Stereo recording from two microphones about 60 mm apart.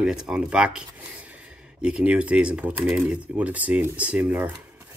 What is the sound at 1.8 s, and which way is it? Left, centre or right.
Speech, right.